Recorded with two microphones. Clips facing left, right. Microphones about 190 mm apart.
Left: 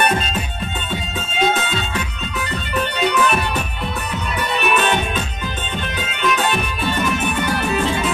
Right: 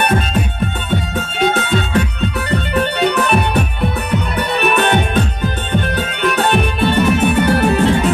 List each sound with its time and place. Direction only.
2.5 s music: 60° right (ahead or behind)
4.6 s music: 60° right (ahead or behind)